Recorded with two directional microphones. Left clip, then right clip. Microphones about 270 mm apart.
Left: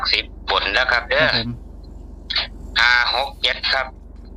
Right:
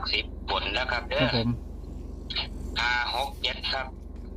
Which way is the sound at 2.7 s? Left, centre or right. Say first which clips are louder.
Left 12 dB; left.